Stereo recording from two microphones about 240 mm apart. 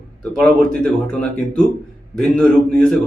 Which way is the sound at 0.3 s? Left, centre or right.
Centre.